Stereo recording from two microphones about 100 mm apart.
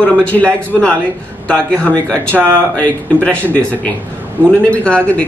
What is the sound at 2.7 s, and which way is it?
Speech, 15° left (ahead or behind).